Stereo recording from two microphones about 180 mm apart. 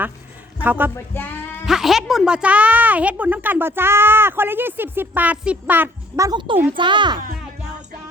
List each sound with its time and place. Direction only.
0.6 s speech: 10° right (ahead or behind)
0.9 s music: 10° left (ahead or behind)
1.6 s speech: centre (ahead or behind); by 7.2 s 25° right (ahead or behind)